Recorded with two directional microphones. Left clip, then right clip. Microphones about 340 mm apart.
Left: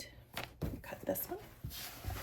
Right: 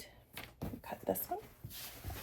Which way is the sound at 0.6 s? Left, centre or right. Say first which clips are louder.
Even; centre.